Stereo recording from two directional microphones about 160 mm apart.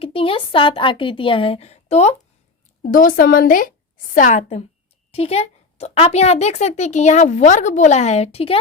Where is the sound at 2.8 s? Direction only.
60° left (ahead or behind).